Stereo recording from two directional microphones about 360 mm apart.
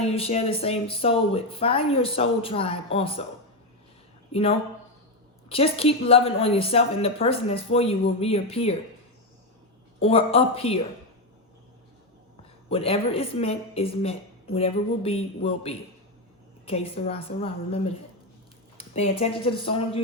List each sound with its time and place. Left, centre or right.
0.0 s speech: centre
4.3 s speech: centre
10.0 s speech: centre
12.7 s speech: centre